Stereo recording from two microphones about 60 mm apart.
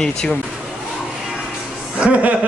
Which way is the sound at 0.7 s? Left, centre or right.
Centre.